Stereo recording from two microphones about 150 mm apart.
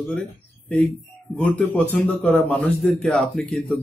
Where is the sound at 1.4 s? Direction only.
10° left (ahead or behind).